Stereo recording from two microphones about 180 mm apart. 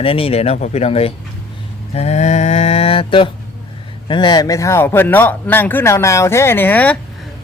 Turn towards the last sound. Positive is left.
turn(degrees=10)  # may be behind; listen again after turning